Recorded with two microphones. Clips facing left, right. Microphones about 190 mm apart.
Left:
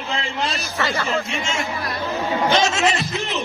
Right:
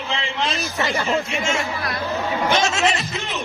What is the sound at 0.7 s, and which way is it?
Speech, 15° right (ahead or behind).